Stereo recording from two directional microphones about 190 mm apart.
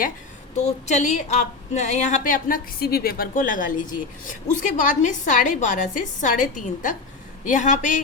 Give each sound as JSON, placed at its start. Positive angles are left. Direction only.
{"t": 0.6, "sound": "a woman's voice", "side_deg": 40}